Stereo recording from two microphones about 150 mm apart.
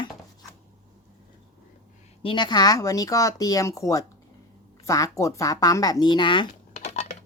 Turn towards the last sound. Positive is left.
turn(degrees=50)  # may be behind; listen again after turning